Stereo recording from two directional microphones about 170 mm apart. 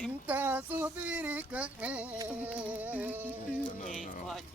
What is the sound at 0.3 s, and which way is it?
Speech, 10° right (ahead or behind).